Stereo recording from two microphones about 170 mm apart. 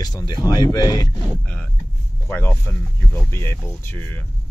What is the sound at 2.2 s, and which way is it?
Speech, 15° left (ahead or behind).